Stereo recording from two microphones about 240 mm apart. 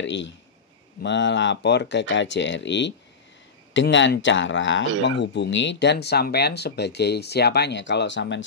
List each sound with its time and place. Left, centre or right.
0.0 s speech: left